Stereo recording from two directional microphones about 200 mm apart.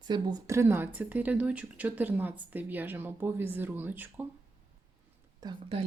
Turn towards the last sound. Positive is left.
turn(degrees=-30)  # may be behind; listen again after turning